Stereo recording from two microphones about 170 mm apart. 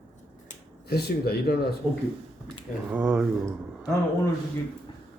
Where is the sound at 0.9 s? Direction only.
65° left (ahead or behind).